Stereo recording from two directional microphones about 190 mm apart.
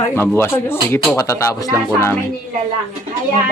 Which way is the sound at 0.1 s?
15° left (ahead or behind).